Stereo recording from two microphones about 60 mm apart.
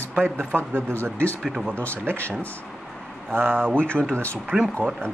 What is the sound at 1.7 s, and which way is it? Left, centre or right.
Speech, left.